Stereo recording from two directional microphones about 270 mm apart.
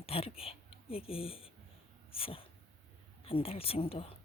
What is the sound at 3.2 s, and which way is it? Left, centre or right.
Speech, left.